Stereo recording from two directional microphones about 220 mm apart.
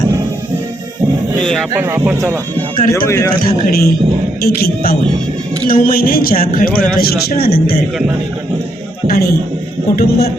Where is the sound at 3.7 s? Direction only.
45° left (ahead or behind).